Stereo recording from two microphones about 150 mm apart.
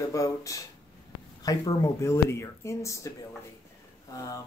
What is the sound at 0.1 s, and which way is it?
Speech, 20° left (ahead or behind).